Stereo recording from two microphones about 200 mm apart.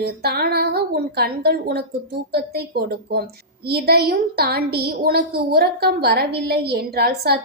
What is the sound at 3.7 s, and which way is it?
Child singing, 50° right (ahead or behind).